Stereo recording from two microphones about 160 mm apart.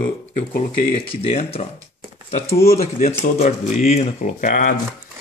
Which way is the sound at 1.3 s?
40° left (ahead or behind).